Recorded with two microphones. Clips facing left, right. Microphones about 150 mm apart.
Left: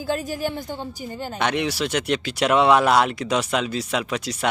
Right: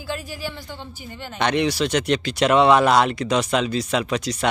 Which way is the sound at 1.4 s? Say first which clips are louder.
Right 3 dB; 10° left (ahead or behind).